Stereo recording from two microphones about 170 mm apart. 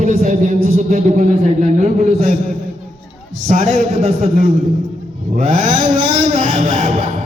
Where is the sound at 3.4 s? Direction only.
40° right (ahead or behind).